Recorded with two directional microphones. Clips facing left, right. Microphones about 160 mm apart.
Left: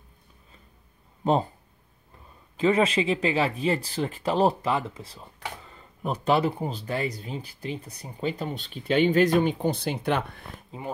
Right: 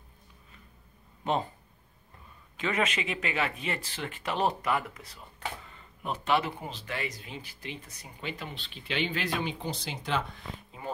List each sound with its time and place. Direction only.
1.2 s speech: 35° left (ahead or behind)
2.5 s speech: 30° left (ahead or behind); by 10.5 s 60° left (ahead or behind)